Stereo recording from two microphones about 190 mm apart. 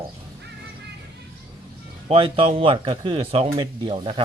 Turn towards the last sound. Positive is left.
turn(degrees=-25)  # may be behind; listen again after turning